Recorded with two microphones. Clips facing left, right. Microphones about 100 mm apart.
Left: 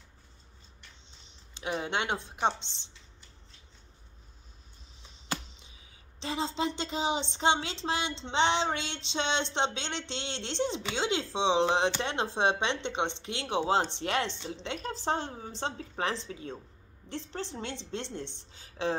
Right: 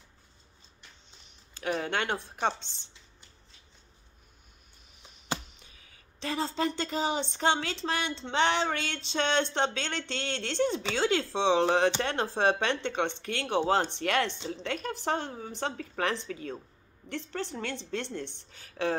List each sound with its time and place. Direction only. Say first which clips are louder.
1.5 s a woman's voice: right 2 dB; 20° left (ahead or behind)
6.1 s a woman's voice: right 1 dB; 20° left (ahead or behind)